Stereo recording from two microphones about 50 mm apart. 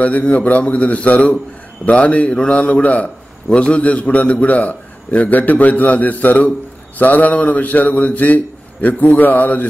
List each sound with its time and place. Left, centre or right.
0.0 s a man's voice: left
7.0 s mantra: left